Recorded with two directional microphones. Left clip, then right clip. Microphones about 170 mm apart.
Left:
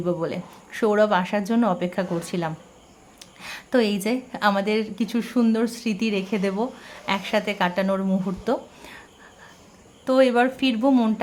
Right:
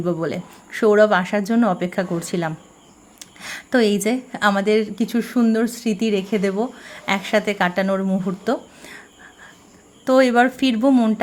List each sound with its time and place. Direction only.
0.0 s a woman's voice: 15° right (ahead or behind)
10.1 s speech: 20° right (ahead or behind)